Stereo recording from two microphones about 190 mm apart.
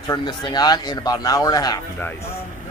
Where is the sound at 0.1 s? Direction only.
20° left (ahead or behind).